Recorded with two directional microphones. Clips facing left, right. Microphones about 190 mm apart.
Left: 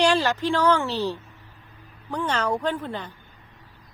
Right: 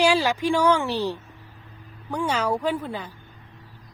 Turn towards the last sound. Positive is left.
turn(degrees=-10)  # may be behind; listen again after turning